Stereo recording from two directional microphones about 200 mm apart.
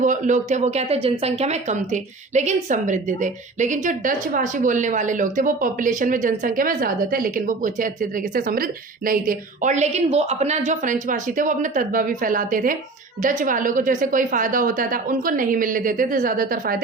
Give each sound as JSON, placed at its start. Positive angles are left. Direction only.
{"t": 0.0, "sound": "a woman's voice", "side_deg": -40}